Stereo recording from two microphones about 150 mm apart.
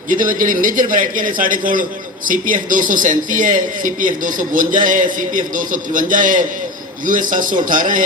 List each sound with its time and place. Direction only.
0.1 s a man's voice: 65° right (ahead or behind)